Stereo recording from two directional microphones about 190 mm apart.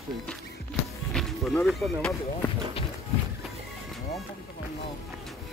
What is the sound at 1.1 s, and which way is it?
Speech, 5° left (ahead or behind).